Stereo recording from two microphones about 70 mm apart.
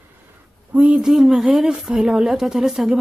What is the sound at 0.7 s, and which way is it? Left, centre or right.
Speech, centre.